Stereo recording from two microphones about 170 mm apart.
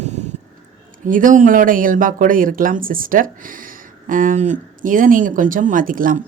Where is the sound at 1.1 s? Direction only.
50° right (ahead or behind).